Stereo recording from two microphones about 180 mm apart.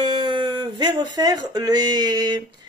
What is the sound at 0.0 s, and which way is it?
Speech, 25° right (ahead or behind).